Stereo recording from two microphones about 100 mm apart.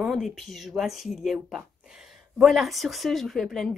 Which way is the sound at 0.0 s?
Centre (ahead or behind).